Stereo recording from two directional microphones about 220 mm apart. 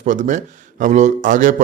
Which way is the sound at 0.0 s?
35° right (ahead or behind).